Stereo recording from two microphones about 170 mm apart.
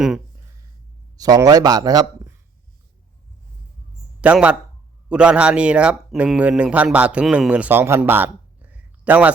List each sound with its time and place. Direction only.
1.1 s speech: 20° right (ahead or behind)
4.2 s speech: 5° right (ahead or behind)
8.7 s a sound: 10° right (ahead or behind)